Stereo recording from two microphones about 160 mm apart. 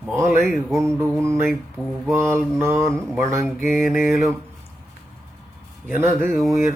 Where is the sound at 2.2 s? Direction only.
15° right (ahead or behind).